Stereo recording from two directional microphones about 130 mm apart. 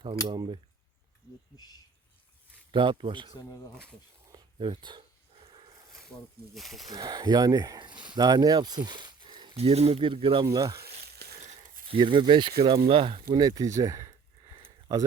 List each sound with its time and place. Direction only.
0.0 s speech: 35° right (ahead or behind)
1.5 s speech: 30° left (ahead or behind)
2.7 s speech: 40° right (ahead or behind)
4.5 s dog: 40° right (ahead or behind)
6.5 s speech: centre (ahead or behind)
6.9 s speech: 30° right (ahead or behind)
9.6 s speech: 50° right (ahead or behind)
10.4 s speech: 25° right (ahead or behind)
10.9 s sizzle: 55° right (ahead or behind)
11.9 s speech: 40° right (ahead or behind)